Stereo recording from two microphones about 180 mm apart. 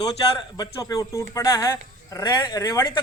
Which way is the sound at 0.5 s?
20° left (ahead or behind).